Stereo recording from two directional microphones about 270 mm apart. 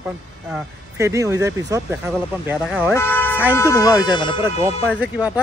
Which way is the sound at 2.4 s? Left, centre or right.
Centre.